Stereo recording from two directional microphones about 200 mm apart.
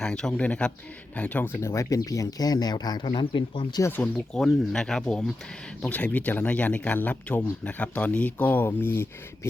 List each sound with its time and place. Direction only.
0.0 s speech: 5° left (ahead or behind)